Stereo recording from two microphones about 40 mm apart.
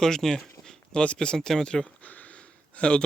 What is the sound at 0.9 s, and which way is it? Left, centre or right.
Speech, left.